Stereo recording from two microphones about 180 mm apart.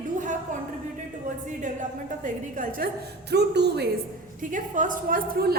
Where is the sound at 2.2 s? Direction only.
50° right (ahead or behind).